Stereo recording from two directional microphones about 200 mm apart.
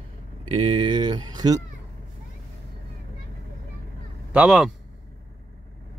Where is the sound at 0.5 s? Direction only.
25° right (ahead or behind).